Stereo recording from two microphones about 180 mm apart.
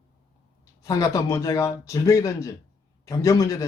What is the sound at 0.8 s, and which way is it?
A man's voice, 20° left (ahead or behind).